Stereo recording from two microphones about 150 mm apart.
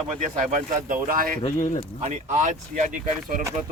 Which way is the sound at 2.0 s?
50° right (ahead or behind).